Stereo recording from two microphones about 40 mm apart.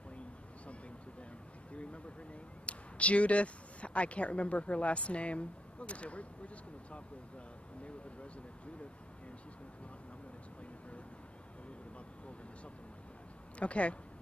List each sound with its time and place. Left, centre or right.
1.7 s a sound: left
2.6 s speech: left
13.6 s speech: left